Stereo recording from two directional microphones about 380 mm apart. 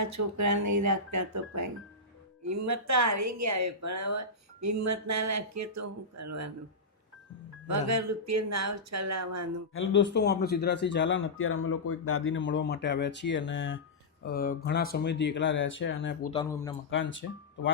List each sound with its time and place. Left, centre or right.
0.0 s speech: right
7.7 s speech: right
9.7 s speech: left
16.3 s a man's voice: centre
16.9 s speech: left